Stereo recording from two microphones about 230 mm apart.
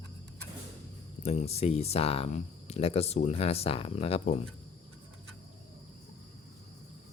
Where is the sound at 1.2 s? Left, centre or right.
Left.